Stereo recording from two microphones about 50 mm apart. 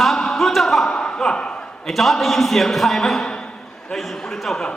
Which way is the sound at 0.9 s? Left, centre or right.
Left.